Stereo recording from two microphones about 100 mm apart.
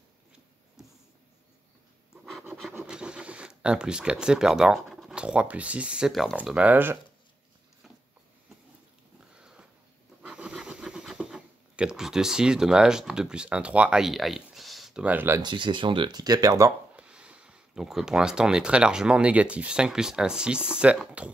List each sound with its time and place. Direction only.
2.8 s speech: 10° right (ahead or behind)
9.3 s sniff: 10° right (ahead or behind)
10.2 s a sound: 10° right (ahead or behind)
15.4 s speech: 55° right (ahead or behind); by 16.7 s 35° right (ahead or behind)
16.9 s speech: 10° right (ahead or behind)